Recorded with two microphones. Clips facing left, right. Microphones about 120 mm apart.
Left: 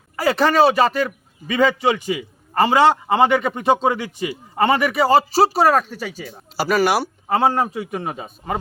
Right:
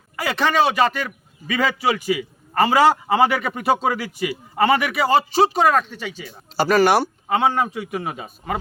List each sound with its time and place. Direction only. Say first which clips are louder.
0.2 s a man's voice: left 4 dB; 35° left (ahead or behind)
6.6 s speech: right 2 dB; 5° left (ahead or behind)
7.3 s a man's voice: left 4 dB; 35° left (ahead or behind)